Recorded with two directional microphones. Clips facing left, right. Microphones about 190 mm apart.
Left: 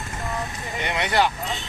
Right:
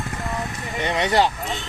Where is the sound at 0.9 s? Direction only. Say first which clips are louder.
Right 3 dB; 25° right (ahead or behind).